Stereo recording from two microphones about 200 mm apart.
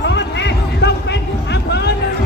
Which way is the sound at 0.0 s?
60° left (ahead or behind).